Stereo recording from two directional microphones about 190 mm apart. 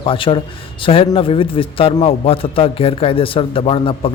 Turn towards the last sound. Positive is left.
turn(degrees=30)  # may be behind; listen again after turning